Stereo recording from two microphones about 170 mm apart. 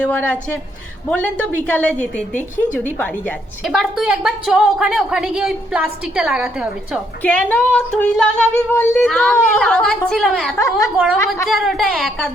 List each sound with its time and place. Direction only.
0.0 s speech: 10° left (ahead or behind)
3.6 s a woman's voice: centre (ahead or behind)
7.2 s a woman's voice: 10° left (ahead or behind)